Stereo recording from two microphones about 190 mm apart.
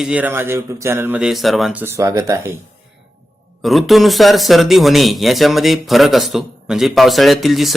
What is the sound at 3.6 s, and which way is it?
Speech, centre (ahead or behind).